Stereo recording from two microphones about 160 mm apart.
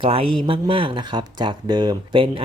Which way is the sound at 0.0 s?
35° right (ahead or behind).